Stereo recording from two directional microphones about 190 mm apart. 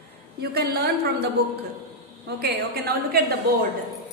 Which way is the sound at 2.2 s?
55° right (ahead or behind).